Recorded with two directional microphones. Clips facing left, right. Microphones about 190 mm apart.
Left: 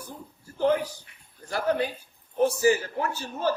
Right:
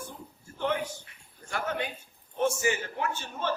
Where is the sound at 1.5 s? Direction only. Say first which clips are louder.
Left 6 dB; 35° left (ahead or behind).